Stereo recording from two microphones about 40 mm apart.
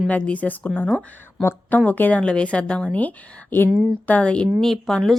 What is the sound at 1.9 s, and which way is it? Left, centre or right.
Speech, left.